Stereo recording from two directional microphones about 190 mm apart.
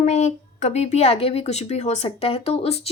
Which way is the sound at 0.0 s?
35° left (ahead or behind).